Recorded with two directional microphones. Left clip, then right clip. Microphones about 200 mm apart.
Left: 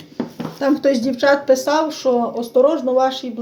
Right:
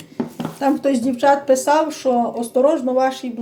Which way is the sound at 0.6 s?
30° left (ahead or behind).